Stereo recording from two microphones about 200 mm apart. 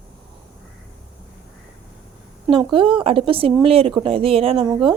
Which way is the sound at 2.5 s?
25° right (ahead or behind).